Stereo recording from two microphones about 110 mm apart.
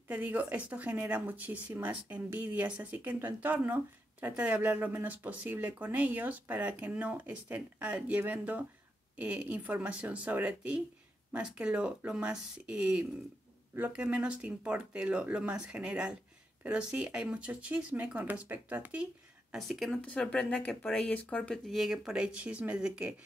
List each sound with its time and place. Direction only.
0.1 s speech: 15° right (ahead or behind)
19.5 s speech: centre (ahead or behind)
20.0 s speech: 10° left (ahead or behind)
21.6 s speech: centre (ahead or behind)